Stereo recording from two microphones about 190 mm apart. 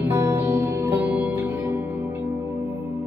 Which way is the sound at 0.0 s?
10° right (ahead or behind).